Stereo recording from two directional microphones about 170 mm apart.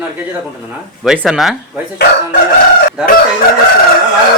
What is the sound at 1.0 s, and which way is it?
Speech, 5° right (ahead or behind).